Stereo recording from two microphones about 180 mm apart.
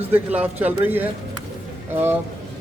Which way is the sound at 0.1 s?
10° right (ahead or behind).